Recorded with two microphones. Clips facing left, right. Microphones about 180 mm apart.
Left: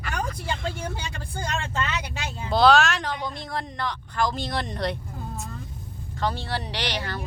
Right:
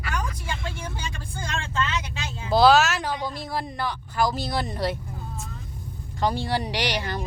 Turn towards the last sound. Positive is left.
turn(degrees=-15)  # may be behind; listen again after turning